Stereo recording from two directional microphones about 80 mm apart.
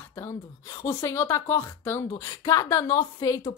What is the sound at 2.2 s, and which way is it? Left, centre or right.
A woman's voice, left.